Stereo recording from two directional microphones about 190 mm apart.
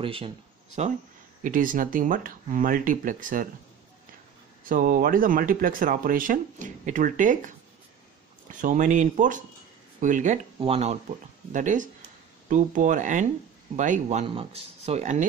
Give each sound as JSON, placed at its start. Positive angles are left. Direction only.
{"t": 0.0, "sound": "speech", "side_deg": -30}
{"t": 4.6, "sound": "speech", "side_deg": -45}